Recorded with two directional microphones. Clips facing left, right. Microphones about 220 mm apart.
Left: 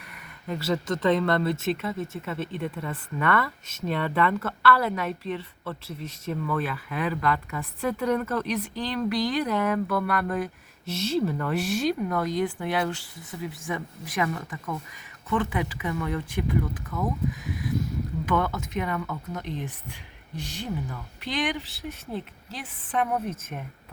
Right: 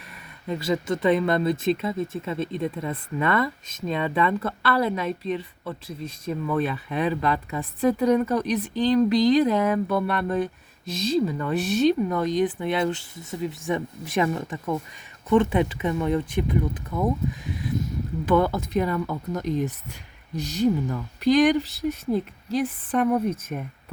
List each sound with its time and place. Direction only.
0.4 s speech: 15° right (ahead or behind); by 23.6 s 40° right (ahead or behind)